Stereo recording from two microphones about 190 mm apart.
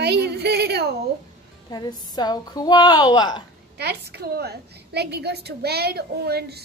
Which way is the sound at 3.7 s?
60° right (ahead or behind).